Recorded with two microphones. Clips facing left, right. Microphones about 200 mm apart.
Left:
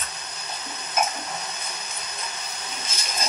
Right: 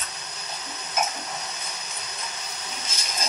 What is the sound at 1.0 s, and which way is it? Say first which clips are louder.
Stir: left 2 dB; 55° left (ahead or behind).